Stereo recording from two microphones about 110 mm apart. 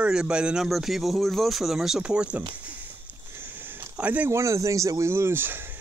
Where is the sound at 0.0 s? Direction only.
10° right (ahead or behind).